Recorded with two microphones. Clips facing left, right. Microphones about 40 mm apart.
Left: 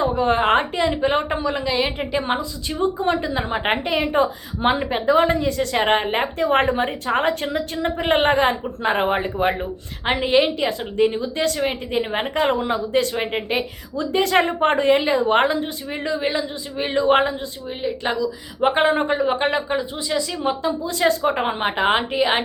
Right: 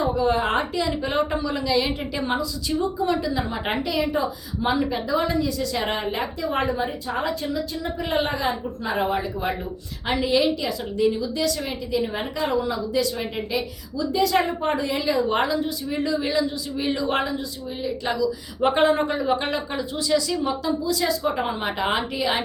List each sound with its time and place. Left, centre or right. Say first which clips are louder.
0.2 s a woman's voice: left 6 dB; left